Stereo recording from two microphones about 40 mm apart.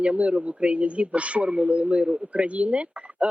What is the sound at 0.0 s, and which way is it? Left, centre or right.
Speech, right.